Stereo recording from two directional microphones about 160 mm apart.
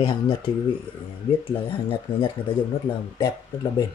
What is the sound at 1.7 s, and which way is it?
Speech, 35° left (ahead or behind).